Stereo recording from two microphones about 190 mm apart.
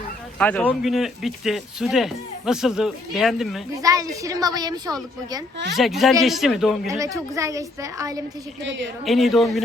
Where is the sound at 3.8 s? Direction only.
20° right (ahead or behind).